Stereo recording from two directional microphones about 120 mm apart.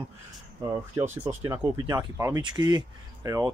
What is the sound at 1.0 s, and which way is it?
Speech, 20° right (ahead or behind).